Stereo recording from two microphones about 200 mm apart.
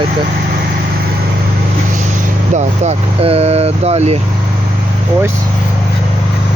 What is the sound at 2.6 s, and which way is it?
Speech, 30° right (ahead or behind).